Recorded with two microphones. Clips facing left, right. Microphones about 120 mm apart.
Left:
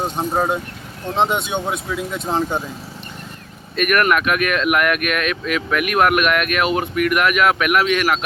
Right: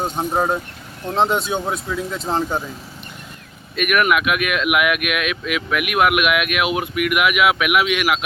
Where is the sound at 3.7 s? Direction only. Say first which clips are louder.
Left 1 dB; 5° right (ahead or behind).